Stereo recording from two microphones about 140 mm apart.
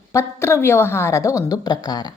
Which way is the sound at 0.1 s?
20° left (ahead or behind).